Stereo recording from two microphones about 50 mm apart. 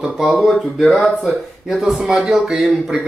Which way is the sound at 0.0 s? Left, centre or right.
Centre.